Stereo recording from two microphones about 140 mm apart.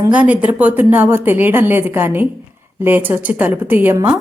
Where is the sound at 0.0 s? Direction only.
10° right (ahead or behind).